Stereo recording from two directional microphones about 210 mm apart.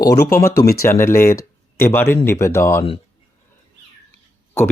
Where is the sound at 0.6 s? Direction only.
20° left (ahead or behind).